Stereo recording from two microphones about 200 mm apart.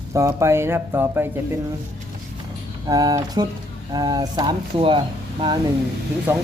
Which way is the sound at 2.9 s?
20° right (ahead or behind).